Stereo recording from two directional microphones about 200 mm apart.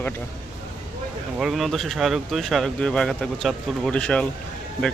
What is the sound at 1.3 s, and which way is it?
Speech, centre (ahead or behind).